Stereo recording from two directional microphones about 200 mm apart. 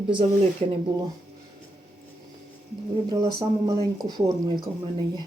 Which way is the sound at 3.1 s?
20° right (ahead or behind).